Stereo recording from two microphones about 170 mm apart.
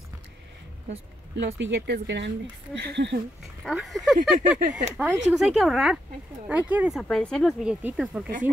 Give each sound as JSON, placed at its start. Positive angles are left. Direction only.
{"t": 1.3, "sound": "speech", "side_deg": -90}
{"t": 3.6, "sound": "speech", "side_deg": 0}
{"t": 4.4, "sound": "a sound", "side_deg": -50}
{"t": 4.9, "sound": "speech", "side_deg": -5}
{"t": 7.0, "sound": "speech", "side_deg": 5}